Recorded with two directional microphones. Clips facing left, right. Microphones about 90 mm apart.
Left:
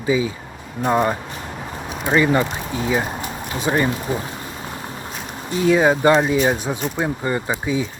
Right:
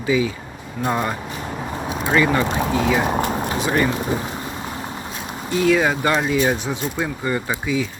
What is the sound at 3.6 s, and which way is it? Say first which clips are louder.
Speech: left 1 dB; 20° left (ahead or behind).